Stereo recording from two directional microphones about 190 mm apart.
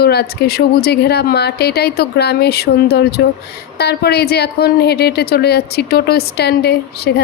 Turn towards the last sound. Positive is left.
turn(degrees=60)  # may be behind; listen again after turning